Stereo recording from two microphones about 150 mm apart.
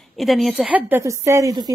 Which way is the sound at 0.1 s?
Centre (ahead or behind).